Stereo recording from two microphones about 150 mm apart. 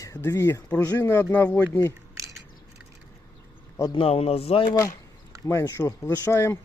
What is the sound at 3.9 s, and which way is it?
Speech, 40° left (ahead or behind).